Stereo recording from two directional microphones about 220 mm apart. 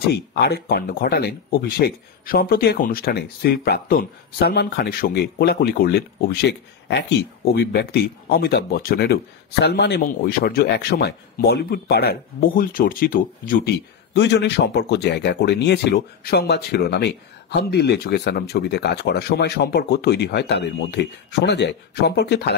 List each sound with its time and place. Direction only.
0.1 s speech: 50° left (ahead or behind)
14.1 s speech: 50° left (ahead or behind)